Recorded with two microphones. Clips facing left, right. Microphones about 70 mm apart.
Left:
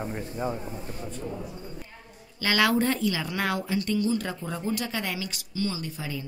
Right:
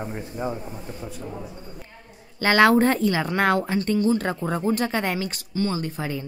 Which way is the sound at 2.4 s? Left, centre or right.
Right.